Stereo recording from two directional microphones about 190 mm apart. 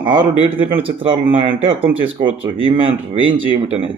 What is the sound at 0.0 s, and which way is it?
A man's voice, 30° right (ahead or behind).